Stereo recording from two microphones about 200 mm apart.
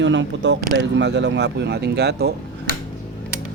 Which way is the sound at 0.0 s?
65° right (ahead or behind).